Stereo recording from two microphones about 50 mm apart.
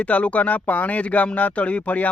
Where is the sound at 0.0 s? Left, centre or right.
Left.